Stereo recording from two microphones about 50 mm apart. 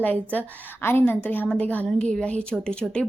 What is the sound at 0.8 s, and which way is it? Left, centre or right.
Speech, left.